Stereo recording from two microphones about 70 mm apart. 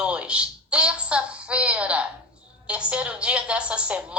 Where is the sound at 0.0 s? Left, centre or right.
Centre.